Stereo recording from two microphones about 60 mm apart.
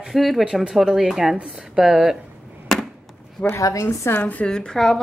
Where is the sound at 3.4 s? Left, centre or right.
Left.